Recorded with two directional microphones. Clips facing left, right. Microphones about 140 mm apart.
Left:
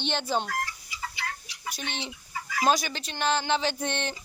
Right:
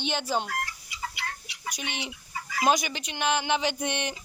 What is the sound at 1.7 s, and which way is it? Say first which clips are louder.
Speech: even; 15° right (ahead or behind).